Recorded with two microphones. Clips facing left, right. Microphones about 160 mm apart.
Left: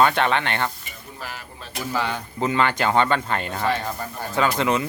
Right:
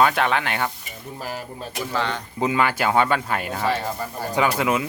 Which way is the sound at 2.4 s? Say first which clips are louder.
Even; 10° right (ahead or behind).